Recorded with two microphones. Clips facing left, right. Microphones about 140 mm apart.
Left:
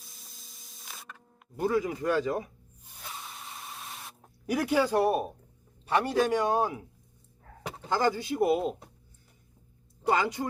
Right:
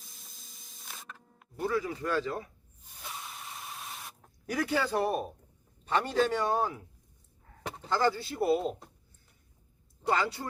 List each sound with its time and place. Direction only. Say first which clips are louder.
0.0 s a sound: left 1 dB; centre (ahead or behind)
1.5 s speech: left 4 dB; 15° left (ahead or behind)
3.1 s printer: even; centre (ahead or behind)
4.2 s speech: left 3 dB; 15° left (ahead or behind)
10.1 s speech: left 3 dB; 15° left (ahead or behind)